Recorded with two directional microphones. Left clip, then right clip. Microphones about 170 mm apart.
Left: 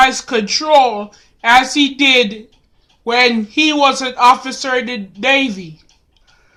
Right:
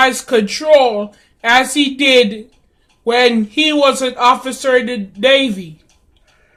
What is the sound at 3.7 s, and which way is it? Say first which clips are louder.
Speech: right 1 dB; 25° left (ahead or behind).